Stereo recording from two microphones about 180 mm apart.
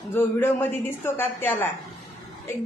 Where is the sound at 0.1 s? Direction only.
10° left (ahead or behind).